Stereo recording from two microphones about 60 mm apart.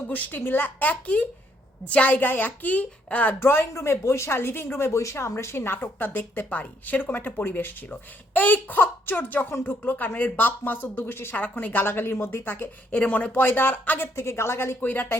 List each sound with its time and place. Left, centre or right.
0.1 s speech: left
2.1 s speech: left
3.4 s speech: left
11.3 s speech: left
12.9 s speech: left
14.2 s a woman's voice: left
14.8 s speech: left